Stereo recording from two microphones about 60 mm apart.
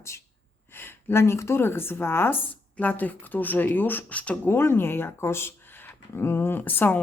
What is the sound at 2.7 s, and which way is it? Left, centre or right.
Speech, left.